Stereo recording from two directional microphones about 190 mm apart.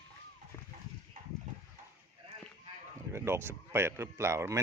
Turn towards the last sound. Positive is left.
turn(degrees=-15)  # may be behind; listen again after turning